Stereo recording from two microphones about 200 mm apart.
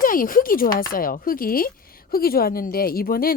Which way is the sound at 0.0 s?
45° left (ahead or behind).